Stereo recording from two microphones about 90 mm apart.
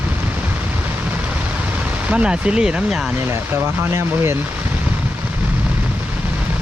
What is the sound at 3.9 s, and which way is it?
Speech, 25° right (ahead or behind).